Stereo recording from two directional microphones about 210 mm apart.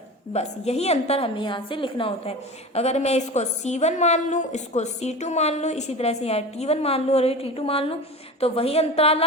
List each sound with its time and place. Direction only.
0.3 s a woman's voice: 30° left (ahead or behind)